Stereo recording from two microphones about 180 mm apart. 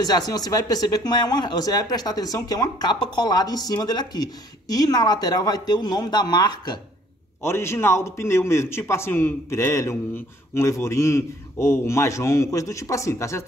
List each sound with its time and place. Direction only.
0.0 s a woman's voice: 20° left (ahead or behind)